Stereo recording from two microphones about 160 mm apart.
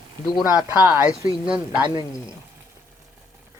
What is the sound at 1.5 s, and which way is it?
Speech, 5° right (ahead or behind).